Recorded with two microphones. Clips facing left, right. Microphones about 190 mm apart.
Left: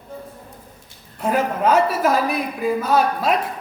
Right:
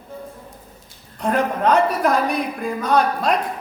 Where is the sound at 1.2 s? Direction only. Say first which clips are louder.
Even; 5° left (ahead or behind).